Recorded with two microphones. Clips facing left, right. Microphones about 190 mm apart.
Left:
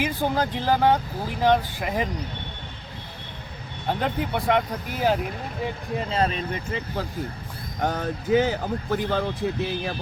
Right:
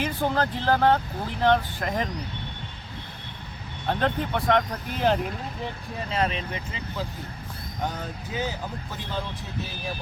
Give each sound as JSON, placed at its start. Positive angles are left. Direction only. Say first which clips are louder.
{"t": 0.0, "sound": "speech", "louder": "left 1 dB", "side_deg": 10}
{"t": 3.8, "sound": "speech", "louder": "even", "side_deg": 10}
{"t": 6.1, "sound": "speech", "louder": "left 1 dB", "side_deg": 35}